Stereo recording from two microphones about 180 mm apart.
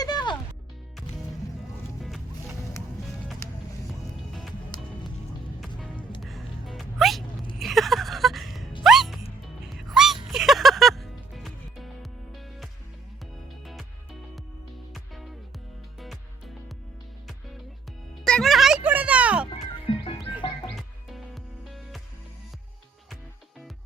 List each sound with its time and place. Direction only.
0.0 s music: 25° left (ahead or behind)
3.4 s music: 15° left (ahead or behind)
5.5 s music: centre (ahead or behind)
7.6 s a sound: centre (ahead or behind)
8.8 s music: centre (ahead or behind)
14.9 s music: centre (ahead or behind)
18.3 s a sound: centre (ahead or behind)
20.7 s music: centre (ahead or behind)